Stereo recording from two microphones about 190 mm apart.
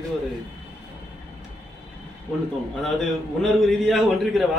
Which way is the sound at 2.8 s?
Centre (ahead or behind).